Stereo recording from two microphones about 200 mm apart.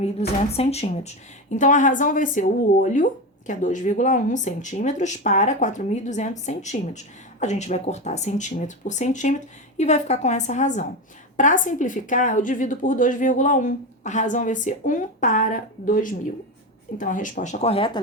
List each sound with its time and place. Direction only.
0.0 s speech: 30° left (ahead or behind)